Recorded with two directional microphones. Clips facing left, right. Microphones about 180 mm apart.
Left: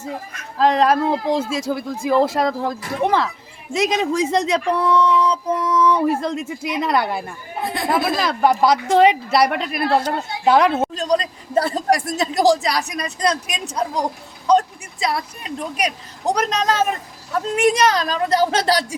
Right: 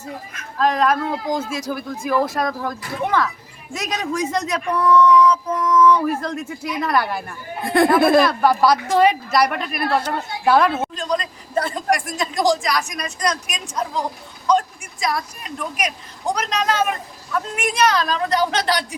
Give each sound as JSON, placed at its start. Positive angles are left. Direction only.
{"t": 0.6, "sound": "speech", "side_deg": 30}
{"t": 7.6, "sound": "speech", "side_deg": -55}
{"t": 8.3, "sound": "speech", "side_deg": 20}
{"t": 10.8, "sound": "speech", "side_deg": 35}
{"t": 15.0, "sound": "speech", "side_deg": 30}